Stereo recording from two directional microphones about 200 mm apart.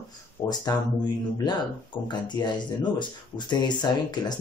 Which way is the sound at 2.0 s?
20° left (ahead or behind).